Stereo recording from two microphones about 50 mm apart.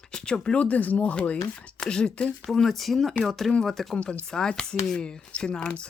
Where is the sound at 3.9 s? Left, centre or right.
Left.